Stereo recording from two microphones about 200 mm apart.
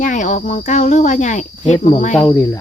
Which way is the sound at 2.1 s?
10° left (ahead or behind).